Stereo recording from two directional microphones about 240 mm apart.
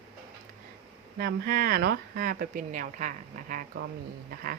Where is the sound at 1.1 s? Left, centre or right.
Right.